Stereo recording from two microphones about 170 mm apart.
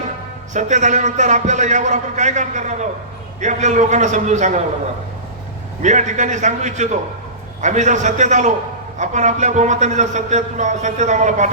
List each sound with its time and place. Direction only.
0.5 s a man's voice: 45° right (ahead or behind)
5.8 s a man's voice: 45° right (ahead or behind)